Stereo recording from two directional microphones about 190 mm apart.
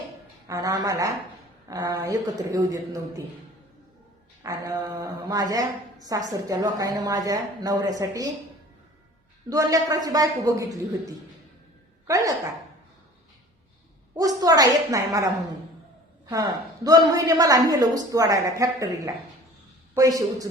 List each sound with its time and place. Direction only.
0.4 s a woman's voice: 20° right (ahead or behind)
4.4 s a woman's voice: 20° right (ahead or behind)
9.5 s a woman's voice: 20° right (ahead or behind)
14.2 s a woman's voice: 20° right (ahead or behind)
16.8 s a woman's voice: 20° right (ahead or behind)